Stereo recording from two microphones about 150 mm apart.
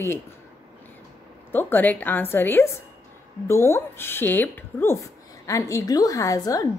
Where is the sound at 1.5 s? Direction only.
15° left (ahead or behind).